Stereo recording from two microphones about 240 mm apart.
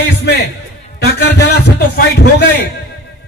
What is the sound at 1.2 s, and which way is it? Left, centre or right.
Music, left.